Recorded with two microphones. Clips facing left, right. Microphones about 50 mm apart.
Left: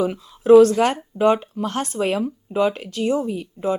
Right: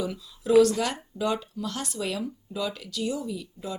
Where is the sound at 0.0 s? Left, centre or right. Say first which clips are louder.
Left 9 dB; left.